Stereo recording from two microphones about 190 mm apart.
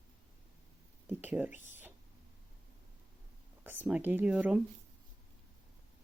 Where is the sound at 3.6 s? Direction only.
10° right (ahead or behind).